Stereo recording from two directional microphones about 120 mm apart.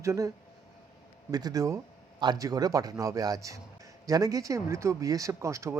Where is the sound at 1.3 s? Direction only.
30° right (ahead or behind).